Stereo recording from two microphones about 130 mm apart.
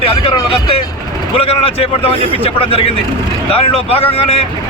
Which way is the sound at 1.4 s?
45° left (ahead or behind).